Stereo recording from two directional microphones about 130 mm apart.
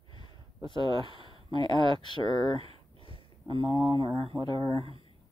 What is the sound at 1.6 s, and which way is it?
Speech, 40° right (ahead or behind).